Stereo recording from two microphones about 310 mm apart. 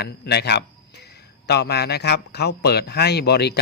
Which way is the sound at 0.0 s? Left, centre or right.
Left.